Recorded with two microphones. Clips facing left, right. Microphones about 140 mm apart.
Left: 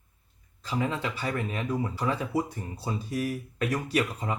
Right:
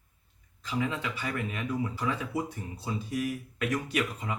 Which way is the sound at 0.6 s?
35° left (ahead or behind).